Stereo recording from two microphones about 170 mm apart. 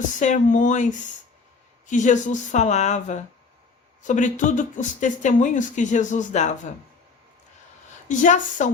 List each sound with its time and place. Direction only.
0.2 s speech: 45° left (ahead or behind)
8.0 s speech: 50° left (ahead or behind)